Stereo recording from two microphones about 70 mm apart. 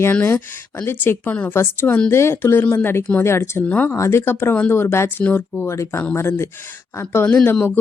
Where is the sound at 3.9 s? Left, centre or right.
Left.